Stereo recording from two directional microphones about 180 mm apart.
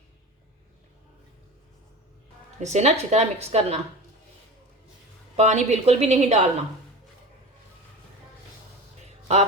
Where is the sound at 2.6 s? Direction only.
40° right (ahead or behind).